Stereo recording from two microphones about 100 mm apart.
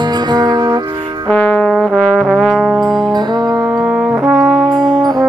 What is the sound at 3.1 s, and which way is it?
Brass instrument, 45° right (ahead or behind).